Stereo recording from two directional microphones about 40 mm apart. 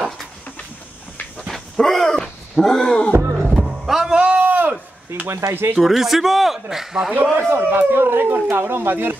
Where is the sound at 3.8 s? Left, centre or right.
Centre.